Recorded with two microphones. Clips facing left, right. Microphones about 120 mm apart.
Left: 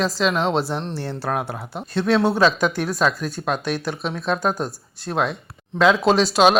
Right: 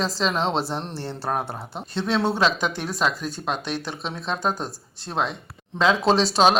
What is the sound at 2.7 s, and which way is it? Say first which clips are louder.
Speech: left 4 dB; 20° right (ahead or behind).